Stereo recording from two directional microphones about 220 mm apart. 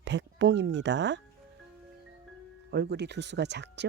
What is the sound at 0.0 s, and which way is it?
Speech, 55° right (ahead or behind).